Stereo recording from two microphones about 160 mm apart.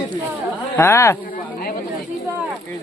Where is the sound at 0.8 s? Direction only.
20° left (ahead or behind).